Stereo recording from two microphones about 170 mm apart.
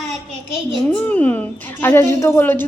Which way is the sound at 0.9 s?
10° left (ahead or behind).